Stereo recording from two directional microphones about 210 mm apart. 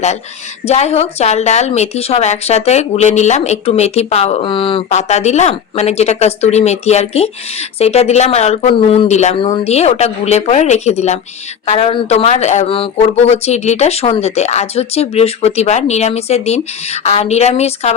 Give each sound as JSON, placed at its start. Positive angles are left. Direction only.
{"t": 0.6, "sound": "a woman's voice", "side_deg": 30}